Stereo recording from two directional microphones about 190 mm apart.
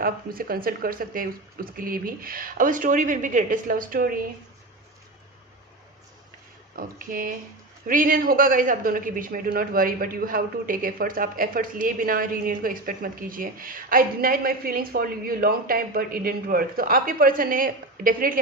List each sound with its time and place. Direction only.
0.0 s speech: 50° right (ahead or behind)
6.7 s speech: 50° right (ahead or behind)